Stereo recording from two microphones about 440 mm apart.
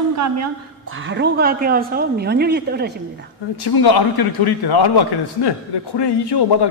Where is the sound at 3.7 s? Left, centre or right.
Left.